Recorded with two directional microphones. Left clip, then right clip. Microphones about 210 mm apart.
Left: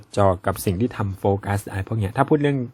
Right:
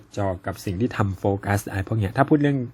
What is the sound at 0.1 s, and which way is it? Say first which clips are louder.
Speech: left 8 dB; 25° left (ahead or behind).